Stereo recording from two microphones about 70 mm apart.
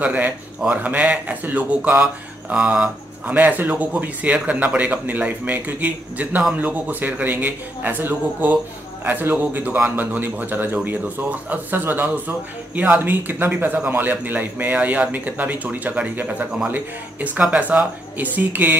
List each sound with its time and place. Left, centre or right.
0.0 s speech: centre